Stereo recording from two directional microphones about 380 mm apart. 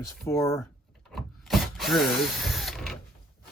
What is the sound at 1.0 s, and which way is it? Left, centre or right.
Ratchet, centre.